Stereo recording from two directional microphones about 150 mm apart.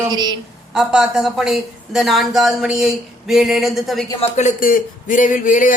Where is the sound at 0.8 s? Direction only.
5° right (ahead or behind).